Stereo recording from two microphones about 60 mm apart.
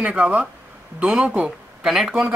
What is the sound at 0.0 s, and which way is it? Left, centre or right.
Speech, centre.